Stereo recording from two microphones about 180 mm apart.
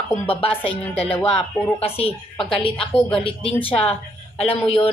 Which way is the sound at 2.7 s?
5° left (ahead or behind).